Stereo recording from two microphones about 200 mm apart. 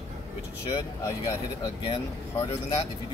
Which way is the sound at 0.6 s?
20° left (ahead or behind).